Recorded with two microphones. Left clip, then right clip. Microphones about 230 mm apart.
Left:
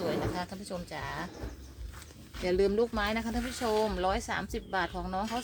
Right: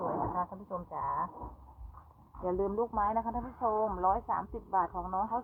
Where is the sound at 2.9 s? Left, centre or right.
Left.